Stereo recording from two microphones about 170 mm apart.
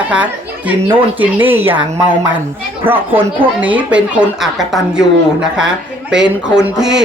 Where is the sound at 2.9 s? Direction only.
10° right (ahead or behind).